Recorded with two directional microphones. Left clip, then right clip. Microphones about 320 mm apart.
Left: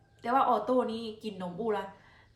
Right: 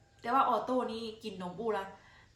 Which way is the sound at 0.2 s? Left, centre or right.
Centre.